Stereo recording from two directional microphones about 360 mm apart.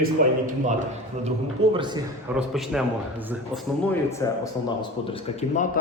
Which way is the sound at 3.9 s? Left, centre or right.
Centre.